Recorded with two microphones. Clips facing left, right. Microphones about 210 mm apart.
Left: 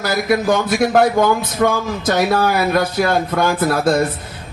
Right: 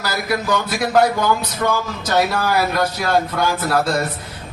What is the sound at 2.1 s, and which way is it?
Speech, 55° left (ahead or behind).